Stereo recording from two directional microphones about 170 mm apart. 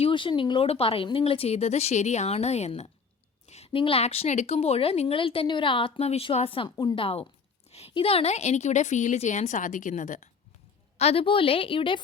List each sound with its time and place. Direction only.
0.0 s a woman's voice: 30° left (ahead or behind); by 10.2 s 45° left (ahead or behind)
10.9 s a woman's voice: 35° left (ahead or behind)